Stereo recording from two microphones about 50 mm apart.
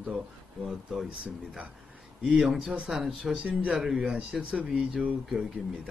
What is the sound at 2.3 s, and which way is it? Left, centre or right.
Speech, centre.